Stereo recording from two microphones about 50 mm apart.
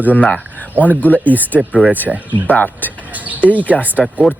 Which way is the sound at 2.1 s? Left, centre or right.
Right.